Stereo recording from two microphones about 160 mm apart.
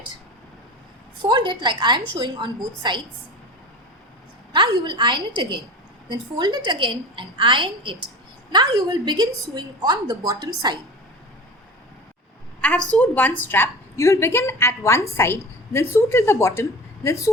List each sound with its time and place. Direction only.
1.2 s a woman's voice: 30° right (ahead or behind)
4.5 s a woman's voice: 25° right (ahead or behind)
12.6 s a woman's voice: 5° left (ahead or behind)